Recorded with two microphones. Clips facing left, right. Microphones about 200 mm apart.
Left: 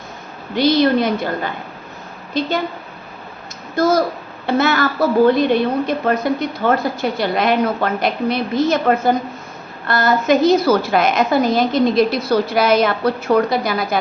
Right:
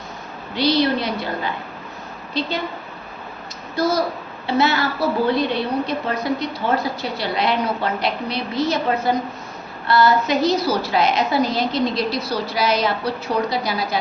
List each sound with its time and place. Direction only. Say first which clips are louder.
0.5 s a woman's voice: left 4 dB; 50° left (ahead or behind)
3.8 s a woman's voice: left 4 dB; 50° left (ahead or behind)